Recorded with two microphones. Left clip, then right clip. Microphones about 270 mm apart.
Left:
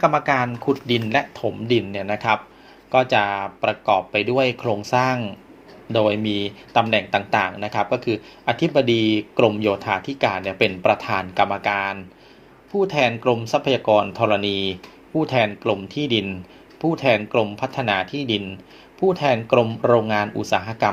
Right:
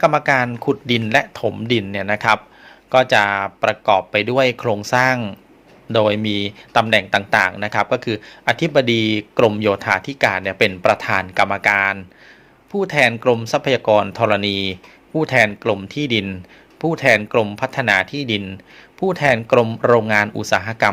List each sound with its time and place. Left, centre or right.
0.0 s speech: right